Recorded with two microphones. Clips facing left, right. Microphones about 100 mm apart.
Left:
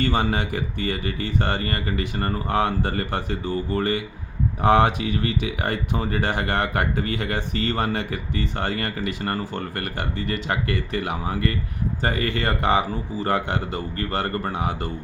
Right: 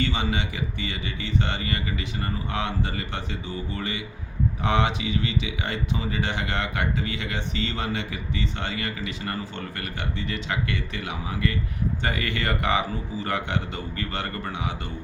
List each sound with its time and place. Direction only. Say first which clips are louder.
0.0 s speech: left 4 dB; 45° left (ahead or behind)